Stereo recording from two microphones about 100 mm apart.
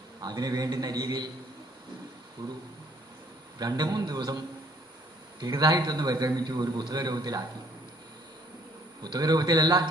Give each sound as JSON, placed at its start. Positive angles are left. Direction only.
{"t": 0.2, "sound": "a man's voice", "side_deg": -40}
{"t": 2.4, "sound": "a man's voice", "side_deg": -40}
{"t": 3.6, "sound": "a man's voice", "side_deg": -40}
{"t": 5.4, "sound": "a man's voice", "side_deg": -40}
{"t": 9.0, "sound": "a man's voice", "side_deg": -40}